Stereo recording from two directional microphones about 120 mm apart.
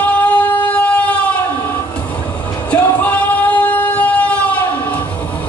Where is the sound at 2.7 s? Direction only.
15° left (ahead or behind).